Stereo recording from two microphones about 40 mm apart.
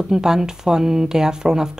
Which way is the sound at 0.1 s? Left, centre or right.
Centre.